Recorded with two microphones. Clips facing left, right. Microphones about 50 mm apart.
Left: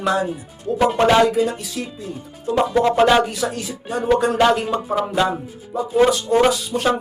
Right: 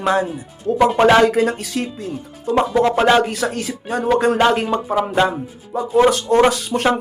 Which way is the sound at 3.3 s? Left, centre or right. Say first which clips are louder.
Right 2 dB; right.